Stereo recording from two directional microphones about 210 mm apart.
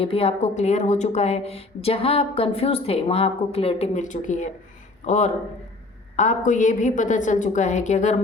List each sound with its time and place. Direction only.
0.0 s a woman's voice: 25° left (ahead or behind)